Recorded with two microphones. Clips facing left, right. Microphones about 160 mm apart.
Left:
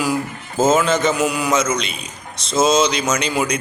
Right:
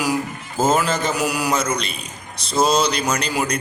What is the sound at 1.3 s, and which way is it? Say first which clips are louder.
Speech: left 1 dB; 70° right (ahead or behind).